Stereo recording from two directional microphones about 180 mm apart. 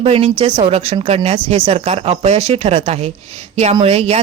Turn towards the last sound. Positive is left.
turn(degrees=-35)  # may be behind; listen again after turning